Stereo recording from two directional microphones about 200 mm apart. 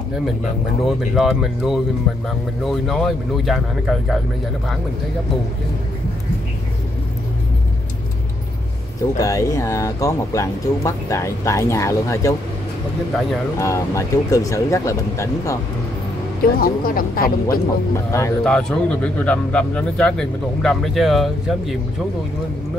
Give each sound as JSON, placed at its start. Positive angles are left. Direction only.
{"t": 0.4, "sound": "speech", "side_deg": 0}
{"t": 9.1, "sound": "speech", "side_deg": 15}
{"t": 13.6, "sound": "speech", "side_deg": 15}
{"t": 16.5, "sound": "speech", "side_deg": 45}
{"t": 17.9, "sound": "speech", "side_deg": 15}
{"t": 18.4, "sound": "speech", "side_deg": 5}